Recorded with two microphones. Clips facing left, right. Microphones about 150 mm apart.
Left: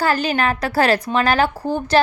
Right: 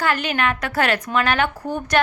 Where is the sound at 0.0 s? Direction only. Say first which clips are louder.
Left 3 dB; 35° left (ahead or behind).